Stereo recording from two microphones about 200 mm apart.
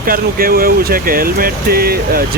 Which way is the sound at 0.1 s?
45° right (ahead or behind).